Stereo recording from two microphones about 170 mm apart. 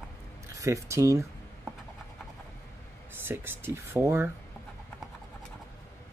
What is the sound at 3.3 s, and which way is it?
Speech, 15° right (ahead or behind).